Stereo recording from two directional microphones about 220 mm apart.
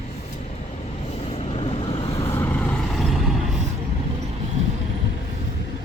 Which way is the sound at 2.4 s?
5° left (ahead or behind).